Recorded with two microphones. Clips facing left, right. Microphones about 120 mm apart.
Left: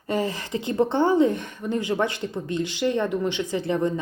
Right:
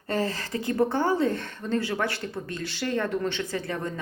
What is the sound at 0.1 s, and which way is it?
A woman's voice, 15° left (ahead or behind).